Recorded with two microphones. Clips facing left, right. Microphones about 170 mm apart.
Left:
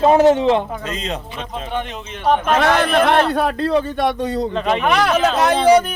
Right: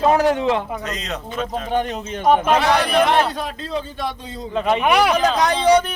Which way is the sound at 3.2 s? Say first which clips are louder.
Left 8 dB; 60° left (ahead or behind).